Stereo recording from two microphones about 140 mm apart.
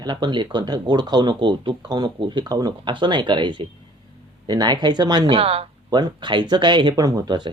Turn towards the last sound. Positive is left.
turn(degrees=-30)  # may be behind; listen again after turning